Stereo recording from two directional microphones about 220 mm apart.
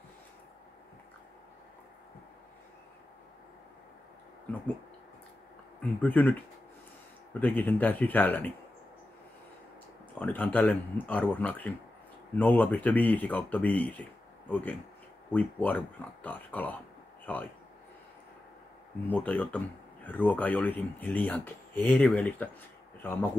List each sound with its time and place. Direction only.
5.8 s speech: 5° left (ahead or behind)
7.3 s speech: 10° left (ahead or behind)
10.1 s speech: 5° left (ahead or behind)
19.0 s speech: 5° left (ahead or behind)